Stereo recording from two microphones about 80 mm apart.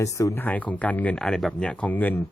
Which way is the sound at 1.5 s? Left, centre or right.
Centre.